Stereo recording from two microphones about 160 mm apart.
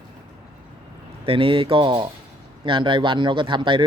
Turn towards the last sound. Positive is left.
turn(degrees=-30)  # may be behind; listen again after turning